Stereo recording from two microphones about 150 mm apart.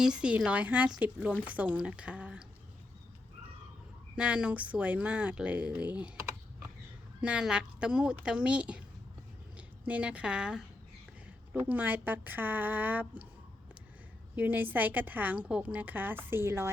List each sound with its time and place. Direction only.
0.0 s a woman's voice: 5° right (ahead or behind)
4.1 s a woman's voice: 5° right (ahead or behind)
7.2 s a woman's voice: 5° right (ahead or behind)
14.3 s a woman's voice: 10° right (ahead or behind)